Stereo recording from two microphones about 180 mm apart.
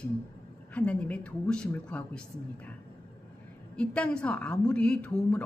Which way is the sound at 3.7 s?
5° left (ahead or behind).